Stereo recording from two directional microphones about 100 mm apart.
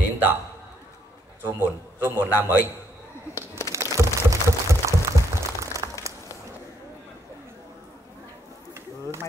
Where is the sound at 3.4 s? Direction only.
35° left (ahead or behind).